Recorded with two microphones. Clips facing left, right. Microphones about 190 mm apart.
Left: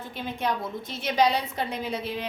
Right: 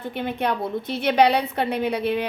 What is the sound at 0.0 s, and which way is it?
A woman's voice, 60° right (ahead or behind).